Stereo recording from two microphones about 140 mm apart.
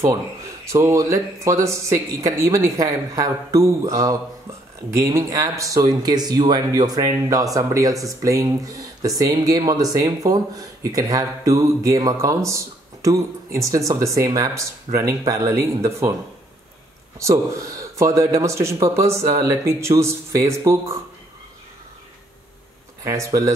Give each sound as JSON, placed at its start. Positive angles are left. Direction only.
{"t": 0.7, "sound": "speech", "side_deg": -20}
{"t": 17.2, "sound": "speech", "side_deg": -20}
{"t": 23.0, "sound": "speech", "side_deg": -20}